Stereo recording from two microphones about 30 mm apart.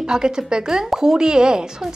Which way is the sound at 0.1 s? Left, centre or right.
Right.